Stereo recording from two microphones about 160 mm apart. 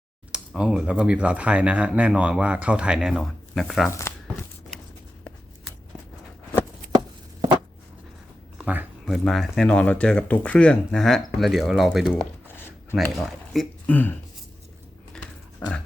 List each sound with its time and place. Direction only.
0.3 s speech: 5° right (ahead or behind)
4.1 s tearing: 15° left (ahead or behind)
8.5 s speech: 10° right (ahead or behind)
12.1 s a sound: 10° left (ahead or behind)
13.1 s speech: centre (ahead or behind)
15.6 s a sound: 5° left (ahead or behind)